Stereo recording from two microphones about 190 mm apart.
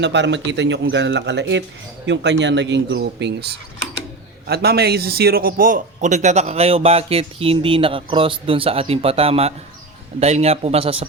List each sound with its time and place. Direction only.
0.0 s a man's voice: 65° right (ahead or behind); by 11.0 s 30° right (ahead or behind)